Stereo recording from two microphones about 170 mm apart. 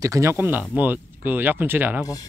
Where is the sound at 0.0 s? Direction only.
20° right (ahead or behind).